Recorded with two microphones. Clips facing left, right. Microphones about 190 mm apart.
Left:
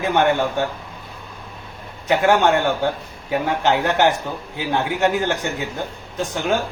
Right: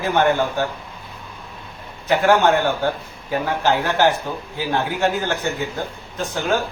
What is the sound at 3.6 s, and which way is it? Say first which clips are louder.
A man's voice: even; 20° left (ahead or behind).